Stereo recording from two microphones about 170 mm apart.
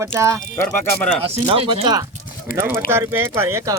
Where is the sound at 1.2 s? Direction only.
35° right (ahead or behind).